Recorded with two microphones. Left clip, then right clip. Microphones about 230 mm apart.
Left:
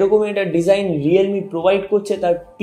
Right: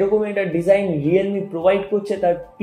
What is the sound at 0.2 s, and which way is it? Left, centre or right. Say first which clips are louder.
Speech: left 3 dB; left.